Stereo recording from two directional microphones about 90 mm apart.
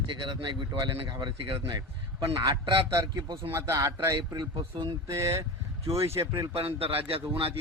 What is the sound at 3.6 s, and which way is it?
Speech, 35° right (ahead or behind).